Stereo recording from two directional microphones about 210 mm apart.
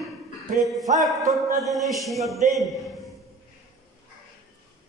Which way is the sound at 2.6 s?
Centre (ahead or behind).